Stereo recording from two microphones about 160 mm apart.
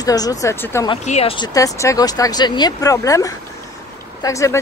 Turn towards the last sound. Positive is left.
turn(degrees=20)  # may be behind; listen again after turning